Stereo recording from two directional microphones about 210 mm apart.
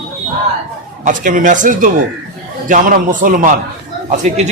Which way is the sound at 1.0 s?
35° right (ahead or behind).